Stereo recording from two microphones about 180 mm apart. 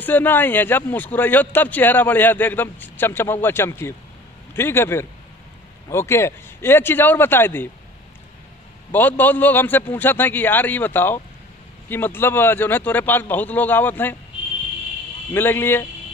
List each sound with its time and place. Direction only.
0.0 s speech: 10° left (ahead or behind)
8.9 s speech: 10° left (ahead or behind)
15.3 s speech: 10° left (ahead or behind)